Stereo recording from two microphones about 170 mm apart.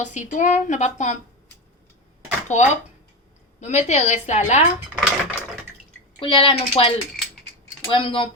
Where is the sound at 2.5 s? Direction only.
45° left (ahead or behind).